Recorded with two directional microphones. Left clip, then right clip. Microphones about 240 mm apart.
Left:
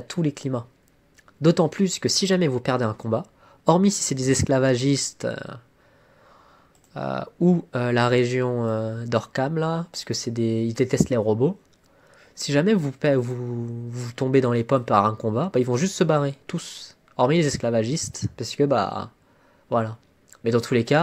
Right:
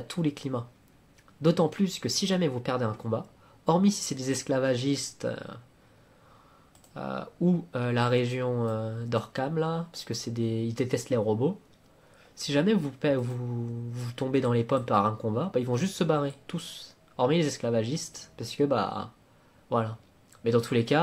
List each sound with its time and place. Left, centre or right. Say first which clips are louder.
0.0 s speech: left 4 dB; left
6.9 s speech: left 7 dB; left